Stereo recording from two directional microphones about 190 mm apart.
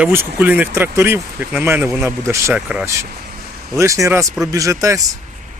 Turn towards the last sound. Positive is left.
turn(degrees=-15)  # may be behind; listen again after turning